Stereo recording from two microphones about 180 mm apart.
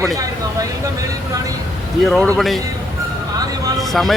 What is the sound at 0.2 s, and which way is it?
Vehicle, 20° right (ahead or behind).